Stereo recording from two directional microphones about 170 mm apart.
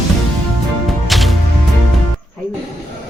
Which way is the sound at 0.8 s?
Centre (ahead or behind).